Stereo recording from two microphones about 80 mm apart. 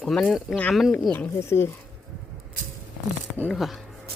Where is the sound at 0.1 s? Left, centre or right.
Centre.